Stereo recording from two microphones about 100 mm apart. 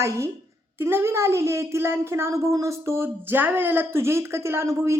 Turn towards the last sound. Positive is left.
turn(degrees=-30)  # may be behind; listen again after turning